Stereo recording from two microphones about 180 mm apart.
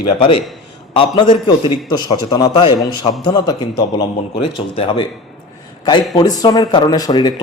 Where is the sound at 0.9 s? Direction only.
25° left (ahead or behind).